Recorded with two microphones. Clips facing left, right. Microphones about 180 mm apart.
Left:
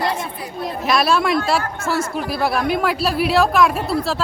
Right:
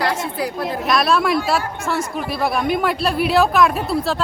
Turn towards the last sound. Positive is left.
turn(degrees=0)  # may be behind; listen again after turning